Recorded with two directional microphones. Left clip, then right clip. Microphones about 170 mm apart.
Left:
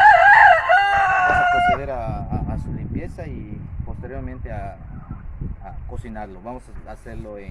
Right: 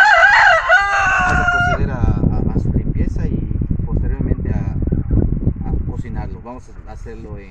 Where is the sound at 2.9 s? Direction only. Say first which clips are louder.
Right 6 dB; 20° left (ahead or behind).